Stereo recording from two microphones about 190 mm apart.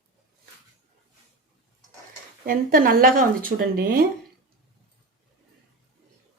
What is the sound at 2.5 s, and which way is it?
Speech, 50° right (ahead or behind).